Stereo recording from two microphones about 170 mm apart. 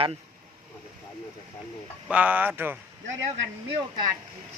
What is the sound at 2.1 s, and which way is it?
Speech, 10° right (ahead or behind).